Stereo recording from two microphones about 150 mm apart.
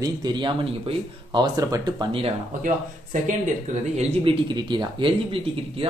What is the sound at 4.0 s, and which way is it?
Speech, 45° right (ahead or behind).